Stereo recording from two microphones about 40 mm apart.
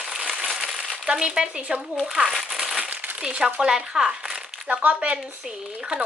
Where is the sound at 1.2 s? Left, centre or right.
Centre.